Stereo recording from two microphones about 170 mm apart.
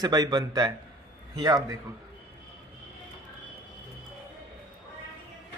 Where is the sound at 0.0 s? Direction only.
25° right (ahead or behind).